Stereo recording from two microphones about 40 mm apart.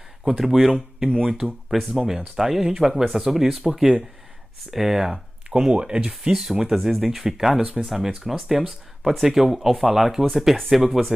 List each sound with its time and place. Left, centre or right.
0.2 s speech: centre
1.4 s speech: centre
4.6 s speech: centre
5.5 s speech: right
6.3 s speech: centre